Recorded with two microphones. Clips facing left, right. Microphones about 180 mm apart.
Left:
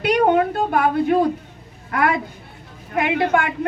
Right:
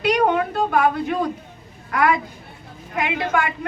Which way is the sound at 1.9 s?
55° left (ahead or behind).